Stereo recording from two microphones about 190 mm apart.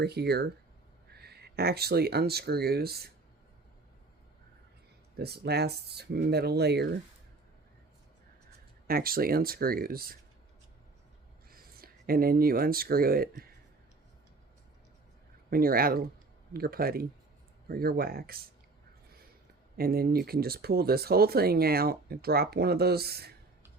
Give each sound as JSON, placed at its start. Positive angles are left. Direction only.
{"t": 0.0, "sound": "speech", "side_deg": -60}
{"t": 5.1, "sound": "speech", "side_deg": -55}
{"t": 8.9, "sound": "speech", "side_deg": -50}
{"t": 11.5, "sound": "speech", "side_deg": -50}
{"t": 15.4, "sound": "speech", "side_deg": -50}
{"t": 19.7, "sound": "speech", "side_deg": -50}